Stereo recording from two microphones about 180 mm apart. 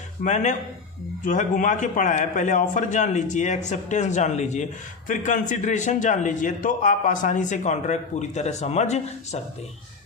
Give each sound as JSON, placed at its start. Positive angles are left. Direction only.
{"t": 0.3, "sound": "a man's voice", "side_deg": 40}